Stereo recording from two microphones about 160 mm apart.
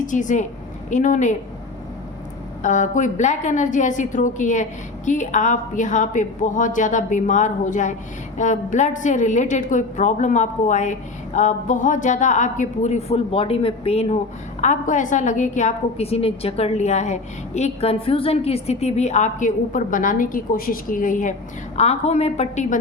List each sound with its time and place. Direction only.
0.0 s a woman's voice: 50° left (ahead or behind)
2.6 s a woman's voice: 50° left (ahead or behind)
14.6 s a woman's voice: 50° left (ahead or behind)
21.8 s a woman's voice: 45° left (ahead or behind)